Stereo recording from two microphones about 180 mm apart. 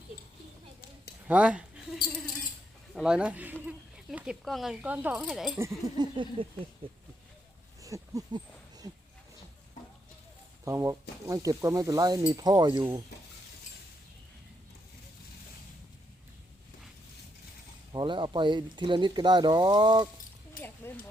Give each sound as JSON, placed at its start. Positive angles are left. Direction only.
{"t": 1.3, "sound": "speech", "side_deg": -5}
{"t": 2.9, "sound": "speech", "side_deg": -5}
{"t": 5.5, "sound": "speech", "side_deg": -15}
{"t": 6.4, "sound": "speech", "side_deg": -30}
{"t": 7.8, "sound": "a sound", "side_deg": -20}
{"t": 10.7, "sound": "speech", "side_deg": -15}
{"t": 17.9, "sound": "speech", "side_deg": -25}
{"t": 20.8, "sound": "speech", "side_deg": 15}